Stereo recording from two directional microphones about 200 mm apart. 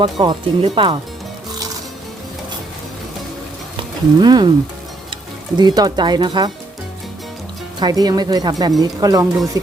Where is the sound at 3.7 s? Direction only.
20° right (ahead or behind).